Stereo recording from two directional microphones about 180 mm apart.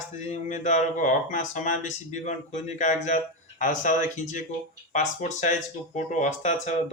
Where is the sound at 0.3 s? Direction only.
45° left (ahead or behind).